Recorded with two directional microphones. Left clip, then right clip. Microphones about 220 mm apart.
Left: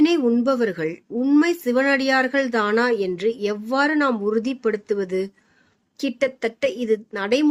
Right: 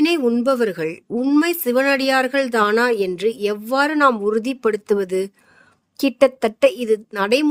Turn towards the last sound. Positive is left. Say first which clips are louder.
# right 3 dB
turn(degrees=-55)  # may be behind; listen again after turning